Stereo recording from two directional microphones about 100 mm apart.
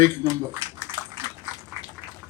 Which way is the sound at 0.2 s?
30° right (ahead or behind).